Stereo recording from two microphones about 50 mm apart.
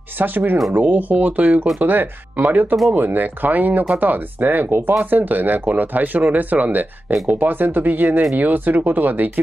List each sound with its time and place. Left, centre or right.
0.2 s speech: right